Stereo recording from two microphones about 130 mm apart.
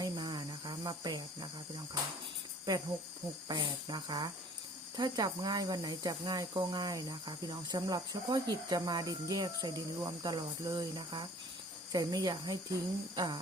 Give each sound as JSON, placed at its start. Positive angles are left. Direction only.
{"t": 0.0, "sound": "cricket", "side_deg": -35}
{"t": 3.5, "sound": "speech", "side_deg": -35}